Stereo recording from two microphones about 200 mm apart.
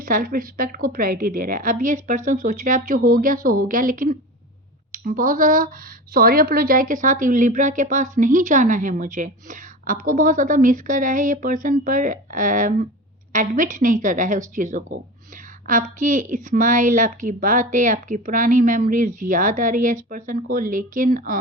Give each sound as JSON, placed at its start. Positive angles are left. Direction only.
{"t": 0.0, "sound": "a woman's voice", "side_deg": -45}